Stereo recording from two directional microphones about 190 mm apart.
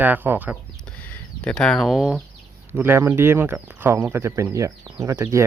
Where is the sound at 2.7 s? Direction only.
10° right (ahead or behind).